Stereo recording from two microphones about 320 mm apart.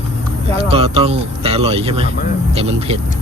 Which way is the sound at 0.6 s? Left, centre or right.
Centre.